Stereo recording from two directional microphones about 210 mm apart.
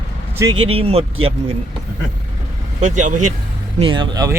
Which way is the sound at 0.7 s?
30° right (ahead or behind).